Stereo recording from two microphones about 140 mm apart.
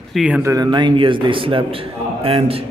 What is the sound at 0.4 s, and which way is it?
Speech, 20° right (ahead or behind).